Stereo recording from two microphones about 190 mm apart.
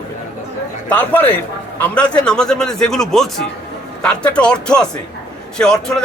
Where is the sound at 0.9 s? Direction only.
10° left (ahead or behind).